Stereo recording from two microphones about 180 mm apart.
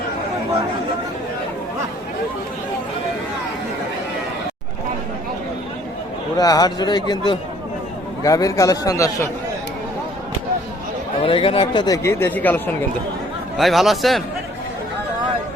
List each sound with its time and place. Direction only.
6.3 s speech: 20° left (ahead or behind)
8.2 s a man's voice: 20° left (ahead or behind)
11.2 s speech: 30° left (ahead or behind); by 14.2 s centre (ahead or behind)